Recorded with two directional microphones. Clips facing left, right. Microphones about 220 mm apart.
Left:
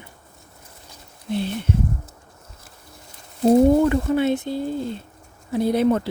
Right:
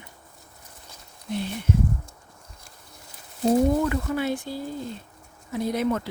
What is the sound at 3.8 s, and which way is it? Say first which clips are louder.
Speech: left 7 dB; 30° left (ahead or behind).